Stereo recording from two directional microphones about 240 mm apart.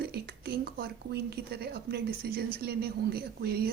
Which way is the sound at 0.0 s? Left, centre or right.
Right.